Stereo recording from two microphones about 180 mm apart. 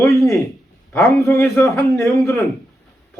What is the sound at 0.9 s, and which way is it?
A man's voice, 15° left (ahead or behind).